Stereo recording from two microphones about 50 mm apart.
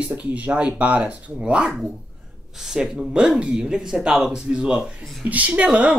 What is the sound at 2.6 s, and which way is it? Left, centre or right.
Speech, centre.